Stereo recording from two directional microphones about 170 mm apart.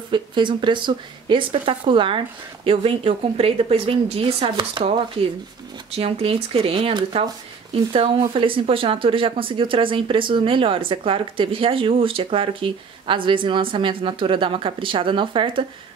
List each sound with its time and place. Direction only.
0.1 s speech: 30° right (ahead or behind)